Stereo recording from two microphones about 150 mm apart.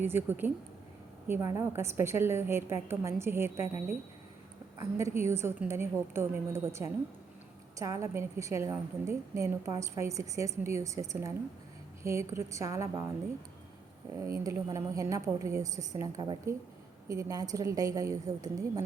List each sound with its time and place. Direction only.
0.0 s a woman's voice: 15° right (ahead or behind)
14.3 s a woman's voice: 20° right (ahead or behind)